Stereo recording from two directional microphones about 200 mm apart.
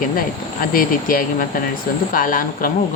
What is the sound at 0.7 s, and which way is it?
Speech, 45° left (ahead or behind).